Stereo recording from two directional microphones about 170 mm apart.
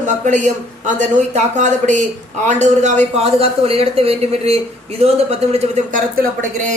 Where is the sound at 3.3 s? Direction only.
35° right (ahead or behind).